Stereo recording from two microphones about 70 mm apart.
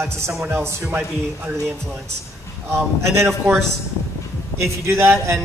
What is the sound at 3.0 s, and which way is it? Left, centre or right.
Speech, right.